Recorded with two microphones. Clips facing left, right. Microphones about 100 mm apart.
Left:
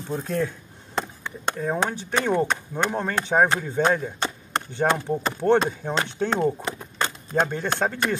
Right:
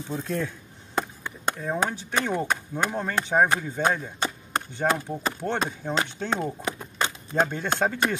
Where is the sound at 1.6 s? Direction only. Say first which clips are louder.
Left 3 dB; 10° left (ahead or behind).